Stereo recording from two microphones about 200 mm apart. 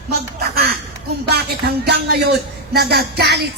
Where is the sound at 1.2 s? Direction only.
55° right (ahead or behind).